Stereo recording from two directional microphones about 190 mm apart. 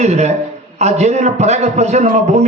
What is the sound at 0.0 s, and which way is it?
A man's voice, 35° right (ahead or behind).